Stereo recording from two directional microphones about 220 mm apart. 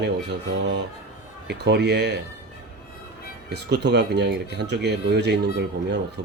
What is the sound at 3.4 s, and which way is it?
Speech, 50° right (ahead or behind).